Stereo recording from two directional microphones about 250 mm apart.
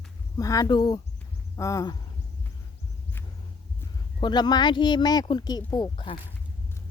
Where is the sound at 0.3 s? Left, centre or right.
Centre.